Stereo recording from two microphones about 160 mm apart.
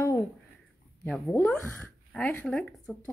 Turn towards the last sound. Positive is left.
turn(degrees=5)  # may be behind; listen again after turning